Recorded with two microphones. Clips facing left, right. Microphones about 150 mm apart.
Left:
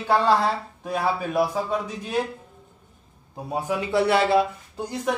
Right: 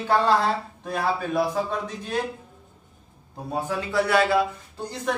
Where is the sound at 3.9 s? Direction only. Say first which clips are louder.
Left 1 dB; 25° left (ahead or behind).